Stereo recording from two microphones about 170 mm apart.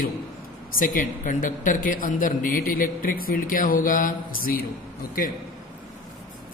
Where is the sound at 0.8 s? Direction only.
50° left (ahead or behind).